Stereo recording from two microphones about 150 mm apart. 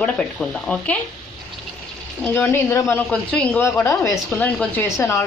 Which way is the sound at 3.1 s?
5° left (ahead or behind).